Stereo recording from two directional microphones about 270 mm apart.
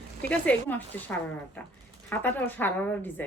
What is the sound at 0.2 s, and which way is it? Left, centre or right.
A woman's voice, centre.